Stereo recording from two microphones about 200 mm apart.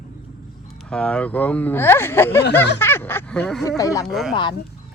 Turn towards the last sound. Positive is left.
turn(degrees=25)  # may be behind; listen again after turning